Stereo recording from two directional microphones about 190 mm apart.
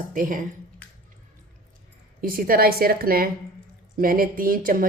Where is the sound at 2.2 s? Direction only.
50° right (ahead or behind).